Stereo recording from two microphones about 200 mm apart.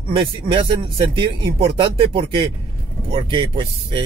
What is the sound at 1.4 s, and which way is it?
Speech, 25° right (ahead or behind).